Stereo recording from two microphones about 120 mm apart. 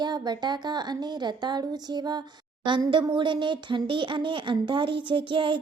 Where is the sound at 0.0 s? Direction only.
35° right (ahead or behind).